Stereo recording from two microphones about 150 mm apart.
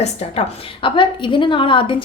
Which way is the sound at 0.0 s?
45° left (ahead or behind).